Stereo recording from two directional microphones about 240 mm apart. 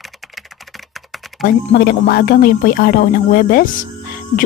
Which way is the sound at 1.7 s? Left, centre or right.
Left.